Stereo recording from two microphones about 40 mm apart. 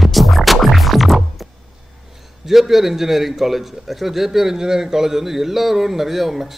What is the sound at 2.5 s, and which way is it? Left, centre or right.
A man's voice, centre.